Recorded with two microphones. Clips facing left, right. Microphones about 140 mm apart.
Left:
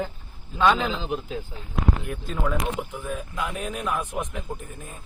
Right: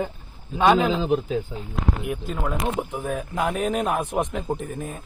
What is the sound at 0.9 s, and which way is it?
Speech, 45° right (ahead or behind).